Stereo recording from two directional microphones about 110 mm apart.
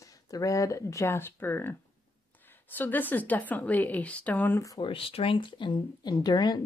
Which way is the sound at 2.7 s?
15° left (ahead or behind).